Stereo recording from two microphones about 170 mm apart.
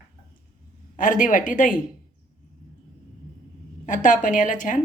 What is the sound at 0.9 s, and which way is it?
Speech, 50° left (ahead or behind).